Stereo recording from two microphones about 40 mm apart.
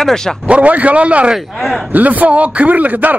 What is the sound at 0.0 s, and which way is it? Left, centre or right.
Speech, centre.